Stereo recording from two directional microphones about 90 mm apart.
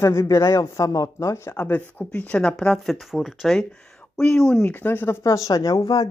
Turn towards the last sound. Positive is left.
turn(degrees=45)  # may be behind; listen again after turning